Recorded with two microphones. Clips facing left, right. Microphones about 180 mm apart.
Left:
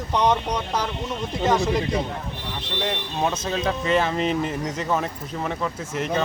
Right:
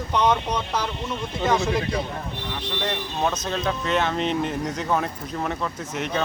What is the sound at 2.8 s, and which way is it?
Speech, 5° left (ahead or behind).